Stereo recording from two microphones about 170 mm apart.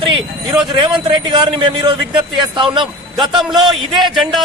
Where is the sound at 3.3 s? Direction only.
Centre (ahead or behind).